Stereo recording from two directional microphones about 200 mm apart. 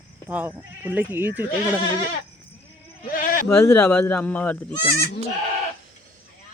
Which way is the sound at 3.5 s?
10° left (ahead or behind).